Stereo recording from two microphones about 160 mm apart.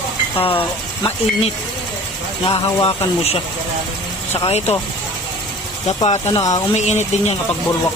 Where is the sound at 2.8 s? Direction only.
40° left (ahead or behind).